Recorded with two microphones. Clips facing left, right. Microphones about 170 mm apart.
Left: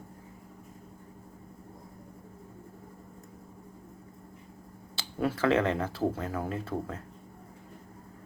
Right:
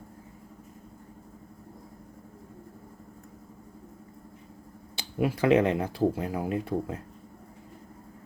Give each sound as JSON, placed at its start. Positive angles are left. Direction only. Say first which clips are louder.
{"t": 4.9, "sound": "speech", "louder": "right 2 dB", "side_deg": -15}